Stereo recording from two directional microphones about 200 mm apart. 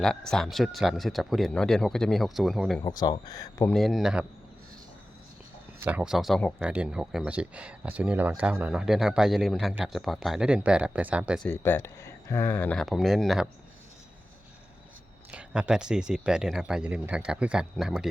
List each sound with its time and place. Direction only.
0.3 s speech: centre (ahead or behind)
2.8 s speech: 20° left (ahead or behind)
3.7 s speech: centre (ahead or behind)
5.8 s speech: 5° right (ahead or behind)
11.4 s speech: 10° left (ahead or behind)
15.3 s speech: 5° right (ahead or behind)